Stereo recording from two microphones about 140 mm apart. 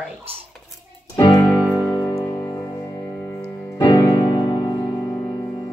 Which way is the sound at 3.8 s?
25° left (ahead or behind).